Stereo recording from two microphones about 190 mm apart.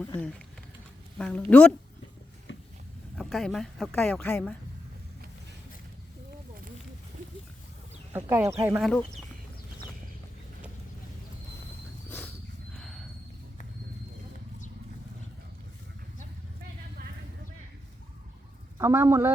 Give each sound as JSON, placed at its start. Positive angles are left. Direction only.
{"t": 1.2, "sound": "a woman's voice", "side_deg": 5}
{"t": 2.5, "sound": "a sound", "side_deg": 80}
{"t": 3.2, "sound": "a woman's voice", "side_deg": 0}
{"t": 8.1, "sound": "speech", "side_deg": -15}
{"t": 8.8, "sound": "a woman's voice", "side_deg": 5}
{"t": 12.0, "sound": "a sound", "side_deg": 10}
{"t": 12.7, "sound": "horse", "side_deg": 5}
{"t": 18.8, "sound": "speech", "side_deg": -15}